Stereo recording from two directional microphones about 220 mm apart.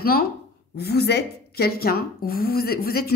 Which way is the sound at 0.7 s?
45° left (ahead or behind).